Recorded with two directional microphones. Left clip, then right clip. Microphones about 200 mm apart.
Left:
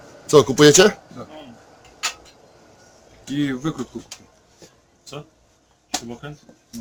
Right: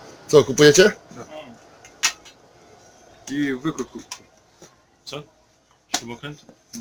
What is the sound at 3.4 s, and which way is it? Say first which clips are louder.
Speech: even; 60° left (ahead or behind).